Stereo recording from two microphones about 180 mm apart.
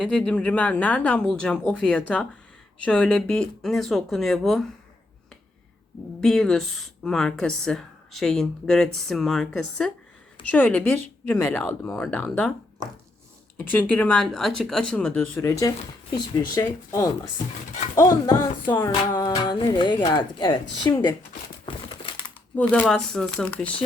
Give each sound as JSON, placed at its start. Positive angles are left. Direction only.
{"t": 0.0, "sound": "a woman's voice", "side_deg": 5}
{"t": 6.1, "sound": "a woman's voice", "side_deg": 5}
{"t": 13.7, "sound": "a woman's voice", "side_deg": 10}
{"t": 21.7, "sound": "crumpling", "side_deg": 25}
{"t": 22.5, "sound": "a woman's voice", "side_deg": 10}